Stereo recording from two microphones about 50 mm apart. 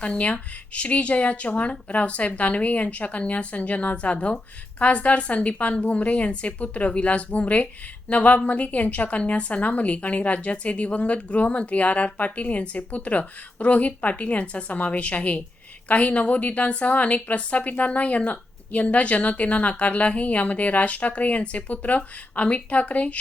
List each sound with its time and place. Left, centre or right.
0.0 s a woman's voice: left